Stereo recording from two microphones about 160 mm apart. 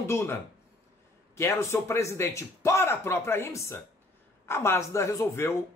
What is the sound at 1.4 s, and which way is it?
Speech, 20° left (ahead or behind).